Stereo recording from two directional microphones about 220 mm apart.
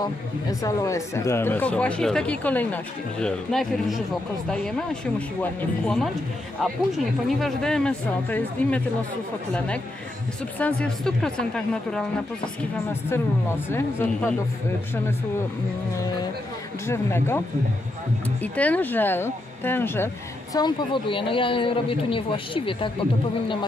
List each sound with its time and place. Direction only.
0.0 s speech: 15° left (ahead or behind)
5.4 s speech: 5° left (ahead or behind)
10.6 s speech: 5° left (ahead or behind)
13.1 s speech: 10° left (ahead or behind)
16.8 s speech: 10° left (ahead or behind)
18.4 s speech: 5° left (ahead or behind)
20.5 s a man's voice: 20° left (ahead or behind)